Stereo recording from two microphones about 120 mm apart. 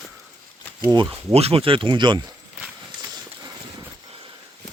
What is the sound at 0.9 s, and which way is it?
Speech, 40° right (ahead or behind).